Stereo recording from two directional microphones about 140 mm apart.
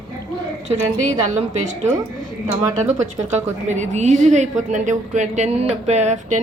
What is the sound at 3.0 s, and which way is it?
A woman's voice, 55° right (ahead or behind).